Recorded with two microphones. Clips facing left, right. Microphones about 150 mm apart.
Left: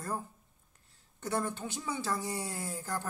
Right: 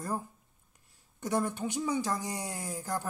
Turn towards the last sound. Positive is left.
turn(degrees=-15)  # may be behind; listen again after turning